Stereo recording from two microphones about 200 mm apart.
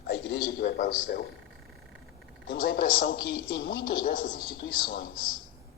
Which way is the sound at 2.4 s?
45° left (ahead or behind).